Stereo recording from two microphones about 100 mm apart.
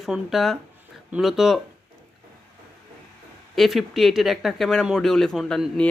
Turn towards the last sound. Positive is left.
turn(degrees=5)  # may be behind; listen again after turning